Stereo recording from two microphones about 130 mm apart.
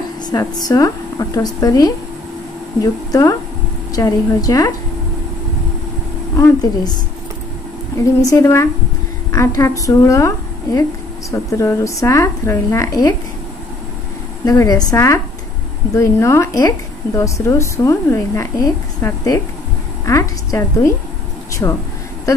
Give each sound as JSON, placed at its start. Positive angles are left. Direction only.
{"t": 0.2, "sound": "a woman's voice", "side_deg": 30}
{"t": 6.6, "sound": "a woman's voice", "side_deg": 30}
{"t": 8.0, "sound": "a woman's voice", "side_deg": 25}
{"t": 14.4, "sound": "a woman's voice", "side_deg": 25}